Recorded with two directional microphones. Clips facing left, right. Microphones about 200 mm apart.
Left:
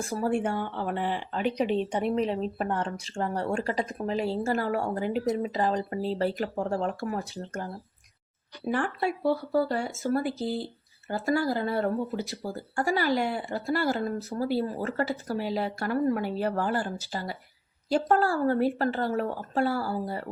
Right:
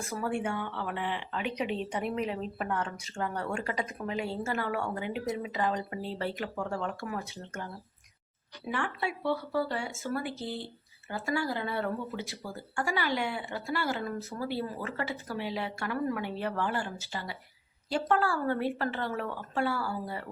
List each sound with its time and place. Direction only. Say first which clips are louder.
0.0 s speech: left 5 dB; 35° left (ahead or behind)